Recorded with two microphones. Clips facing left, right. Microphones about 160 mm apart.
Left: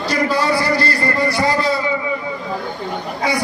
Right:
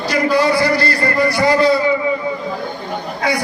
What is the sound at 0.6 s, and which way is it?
Music, 30° left (ahead or behind).